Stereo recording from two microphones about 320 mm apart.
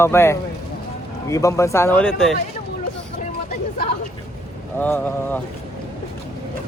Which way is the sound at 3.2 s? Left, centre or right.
Left.